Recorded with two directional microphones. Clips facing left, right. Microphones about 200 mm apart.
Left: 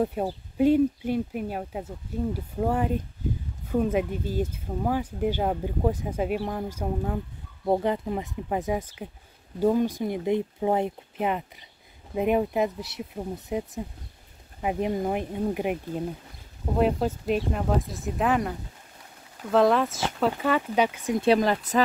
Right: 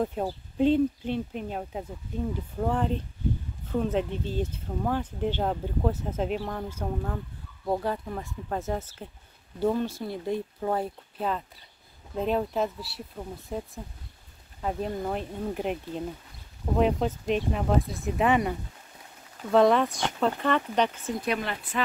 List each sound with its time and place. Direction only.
0.0 s speech: 10° left (ahead or behind)
21.2 s speech: 35° left (ahead or behind)